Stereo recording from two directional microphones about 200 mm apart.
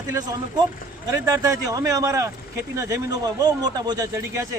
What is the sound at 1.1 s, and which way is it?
A man's voice, 15° right (ahead or behind).